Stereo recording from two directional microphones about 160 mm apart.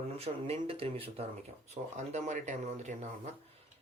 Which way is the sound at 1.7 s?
50° right (ahead or behind).